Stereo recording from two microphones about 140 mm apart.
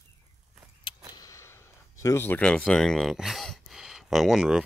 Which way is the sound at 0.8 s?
25° left (ahead or behind).